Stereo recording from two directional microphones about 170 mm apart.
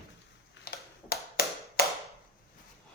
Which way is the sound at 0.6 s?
65° left (ahead or behind).